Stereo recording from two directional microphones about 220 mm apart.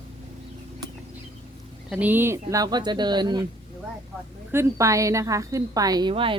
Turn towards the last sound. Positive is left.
turn(degrees=-25)  # may be behind; listen again after turning